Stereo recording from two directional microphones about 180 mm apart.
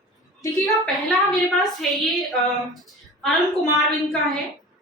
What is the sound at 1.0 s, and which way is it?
A woman's voice, centre (ahead or behind).